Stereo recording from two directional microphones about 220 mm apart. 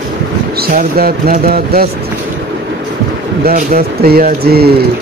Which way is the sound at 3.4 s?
40° right (ahead or behind).